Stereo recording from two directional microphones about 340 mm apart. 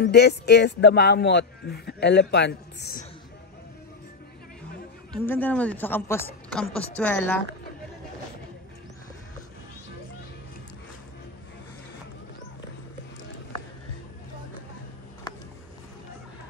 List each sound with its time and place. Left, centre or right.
0.0 s a man's voice: left
5.1 s a woman's voice: centre